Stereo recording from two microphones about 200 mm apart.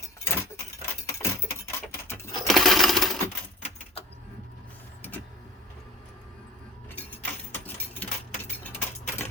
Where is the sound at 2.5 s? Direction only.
Centre (ahead or behind).